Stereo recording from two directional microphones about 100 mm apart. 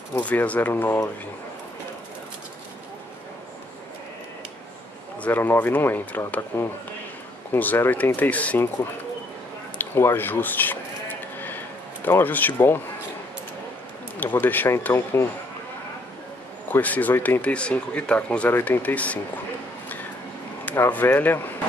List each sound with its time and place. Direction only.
0.2 s speech: 15° left (ahead or behind)
5.2 s speech: 20° left (ahead or behind)
9.8 s speech: 20° left (ahead or behind)
12.0 s speech: 20° left (ahead or behind)
14.2 s speech: 20° left (ahead or behind)
16.6 s speech: 15° left (ahead or behind)
20.6 s speech: 20° left (ahead or behind)